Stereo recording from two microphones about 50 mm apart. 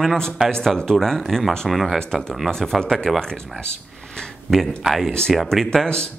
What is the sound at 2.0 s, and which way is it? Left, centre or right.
Speech, centre.